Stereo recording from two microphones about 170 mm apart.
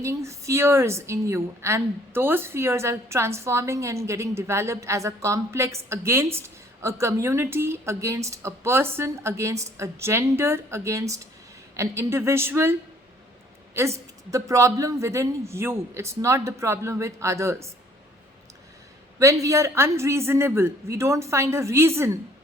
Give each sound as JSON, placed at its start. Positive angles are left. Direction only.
{"t": 0.0, "sound": "a woman's voice", "side_deg": -15}
{"t": 13.7, "sound": "a woman's voice", "side_deg": -15}
{"t": 19.2, "sound": "a woman's voice", "side_deg": -20}